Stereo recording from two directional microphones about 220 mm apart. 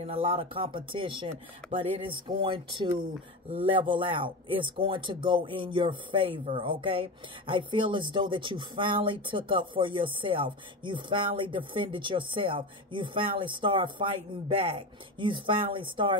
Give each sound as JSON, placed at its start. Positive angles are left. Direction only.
{"t": 0.0, "sound": "speech", "side_deg": -25}
{"t": 1.6, "sound": "speech", "side_deg": 5}
{"t": 2.2, "sound": "speech", "side_deg": -20}